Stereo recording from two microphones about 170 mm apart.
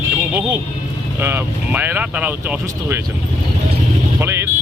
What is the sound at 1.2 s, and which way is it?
Speech, 15° right (ahead or behind).